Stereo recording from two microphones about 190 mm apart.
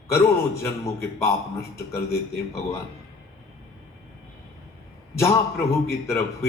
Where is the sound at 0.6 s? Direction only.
15° left (ahead or behind).